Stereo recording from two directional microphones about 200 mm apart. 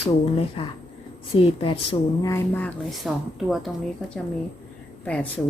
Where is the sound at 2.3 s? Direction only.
10° left (ahead or behind).